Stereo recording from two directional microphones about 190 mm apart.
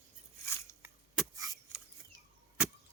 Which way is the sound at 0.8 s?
15° right (ahead or behind).